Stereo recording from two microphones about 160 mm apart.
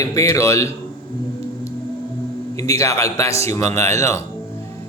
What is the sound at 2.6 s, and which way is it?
Speech, 20° left (ahead or behind).